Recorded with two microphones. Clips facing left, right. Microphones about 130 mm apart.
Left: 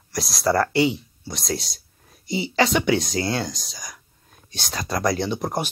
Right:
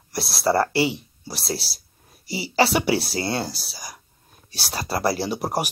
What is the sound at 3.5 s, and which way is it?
Speech, 5° right (ahead or behind).